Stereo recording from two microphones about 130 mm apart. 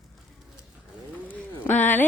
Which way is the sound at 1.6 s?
15° left (ahead or behind).